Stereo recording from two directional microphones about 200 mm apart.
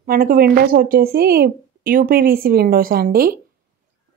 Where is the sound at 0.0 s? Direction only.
45° right (ahead or behind).